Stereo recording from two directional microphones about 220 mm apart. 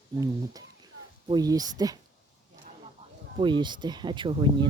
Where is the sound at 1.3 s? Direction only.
15° right (ahead or behind).